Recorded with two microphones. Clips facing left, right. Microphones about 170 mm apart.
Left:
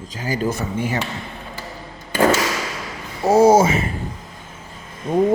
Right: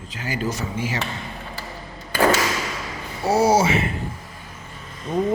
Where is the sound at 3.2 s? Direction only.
50° left (ahead or behind).